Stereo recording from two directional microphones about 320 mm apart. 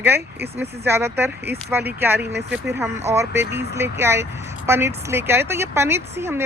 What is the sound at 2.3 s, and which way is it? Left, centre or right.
Speech, right.